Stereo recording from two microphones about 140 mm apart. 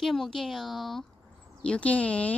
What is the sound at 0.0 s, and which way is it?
Speech, centre (ahead or behind).